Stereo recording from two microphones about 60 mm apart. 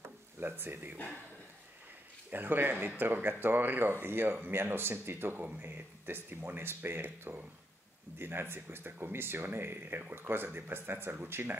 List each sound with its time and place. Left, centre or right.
0.4 s speech: right
2.3 s speech: right